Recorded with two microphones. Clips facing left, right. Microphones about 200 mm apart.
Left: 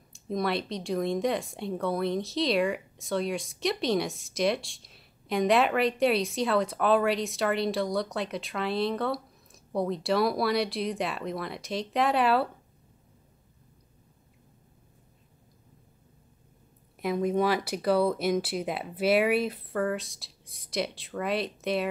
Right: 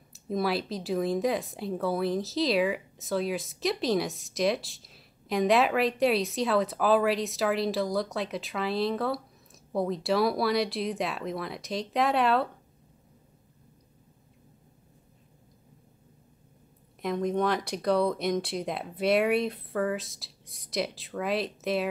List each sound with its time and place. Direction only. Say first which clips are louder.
0.1 s speech: right 1 dB; 5° right (ahead or behind)
17.0 s speech: left 1 dB; 5° left (ahead or behind)